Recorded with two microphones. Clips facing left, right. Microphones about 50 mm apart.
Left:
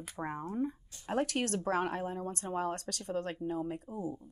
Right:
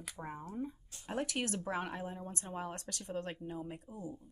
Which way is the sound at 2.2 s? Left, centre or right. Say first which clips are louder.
Left 7 dB; centre.